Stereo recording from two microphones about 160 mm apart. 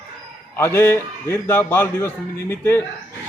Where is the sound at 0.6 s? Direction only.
15° left (ahead or behind).